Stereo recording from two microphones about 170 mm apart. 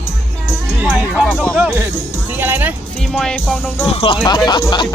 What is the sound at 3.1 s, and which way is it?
Speech, centre (ahead or behind).